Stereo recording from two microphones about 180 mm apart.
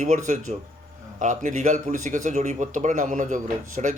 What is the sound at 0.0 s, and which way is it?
Speech, 45° right (ahead or behind).